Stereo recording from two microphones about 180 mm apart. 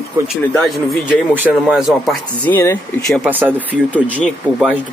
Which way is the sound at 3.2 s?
10° right (ahead or behind).